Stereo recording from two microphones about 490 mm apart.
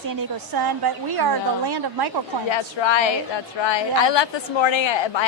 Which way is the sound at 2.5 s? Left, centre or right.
Left.